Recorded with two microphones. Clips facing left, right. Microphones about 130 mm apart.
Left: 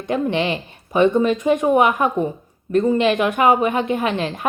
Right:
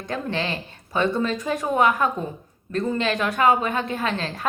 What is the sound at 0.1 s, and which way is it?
Speech, 15° left (ahead or behind).